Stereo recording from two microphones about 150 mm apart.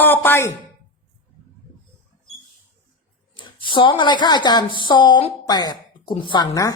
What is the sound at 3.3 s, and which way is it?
Speech, 35° left (ahead or behind).